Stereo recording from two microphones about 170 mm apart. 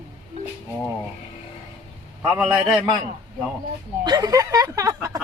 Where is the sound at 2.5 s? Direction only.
25° right (ahead or behind).